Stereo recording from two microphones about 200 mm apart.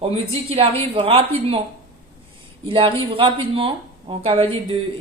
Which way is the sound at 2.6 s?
25° right (ahead or behind).